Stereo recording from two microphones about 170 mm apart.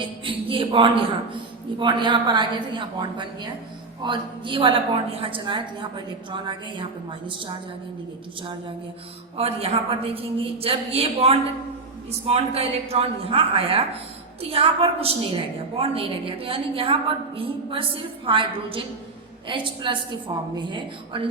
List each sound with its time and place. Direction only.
0.0 s a woman's voice: 30° right (ahead or behind)
9.4 s a woman's voice: 35° right (ahead or behind)